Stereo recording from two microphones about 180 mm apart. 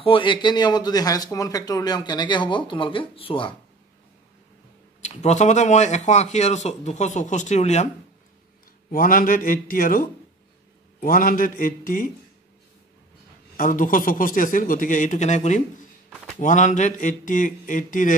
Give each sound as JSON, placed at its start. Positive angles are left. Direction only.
{"t": 0.0, "sound": "speech", "side_deg": 30}
{"t": 5.0, "sound": "speech", "side_deg": 40}
{"t": 8.9, "sound": "a man's voice", "side_deg": 50}
{"t": 13.6, "sound": "a man's voice", "side_deg": 50}